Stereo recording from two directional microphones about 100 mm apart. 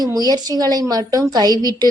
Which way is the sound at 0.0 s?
40° right (ahead or behind).